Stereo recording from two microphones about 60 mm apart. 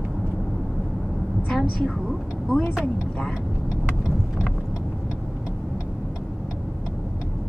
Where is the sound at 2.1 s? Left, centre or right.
Centre.